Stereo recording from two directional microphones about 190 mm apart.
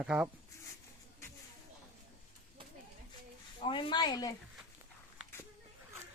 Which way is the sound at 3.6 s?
25° left (ahead or behind).